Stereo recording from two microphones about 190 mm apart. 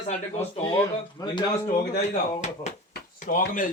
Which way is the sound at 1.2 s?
20° left (ahead or behind).